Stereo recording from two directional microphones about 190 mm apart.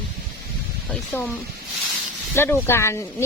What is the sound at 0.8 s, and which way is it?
Speech, 5° left (ahead or behind).